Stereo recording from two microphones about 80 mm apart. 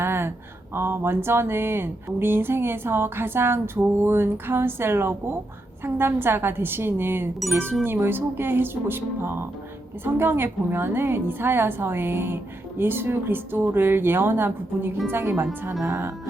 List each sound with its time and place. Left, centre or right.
0.0 s speech: right